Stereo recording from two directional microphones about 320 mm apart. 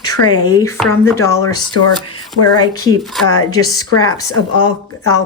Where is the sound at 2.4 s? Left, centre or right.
Left.